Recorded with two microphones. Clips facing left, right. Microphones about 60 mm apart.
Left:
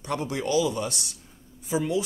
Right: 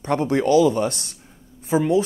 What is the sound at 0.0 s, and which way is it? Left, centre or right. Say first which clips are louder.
A man's voice: right 9 dB; right.